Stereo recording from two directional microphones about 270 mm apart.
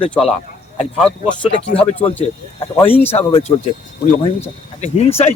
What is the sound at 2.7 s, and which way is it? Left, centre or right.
Speech, centre.